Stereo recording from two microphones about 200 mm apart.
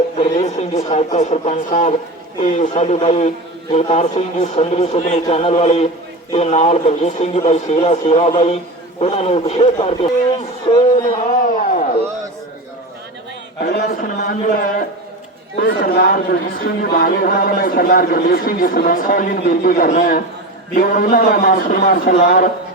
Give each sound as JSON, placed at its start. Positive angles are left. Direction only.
{"t": 0.2, "sound": "a man's voice", "side_deg": 35}
{"t": 11.6, "sound": "a sound", "side_deg": 40}
{"t": 13.6, "sound": "speech", "side_deg": 50}